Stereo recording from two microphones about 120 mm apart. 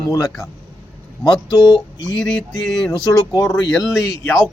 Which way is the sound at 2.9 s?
25° left (ahead or behind).